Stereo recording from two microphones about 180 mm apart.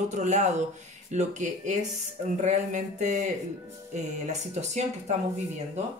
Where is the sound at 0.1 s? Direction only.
40° right (ahead or behind).